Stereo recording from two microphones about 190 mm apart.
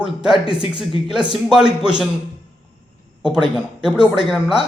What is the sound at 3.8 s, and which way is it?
Speech, 5° right (ahead or behind).